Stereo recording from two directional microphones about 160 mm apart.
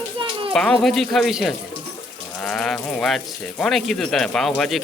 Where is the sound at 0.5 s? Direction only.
5° left (ahead or behind).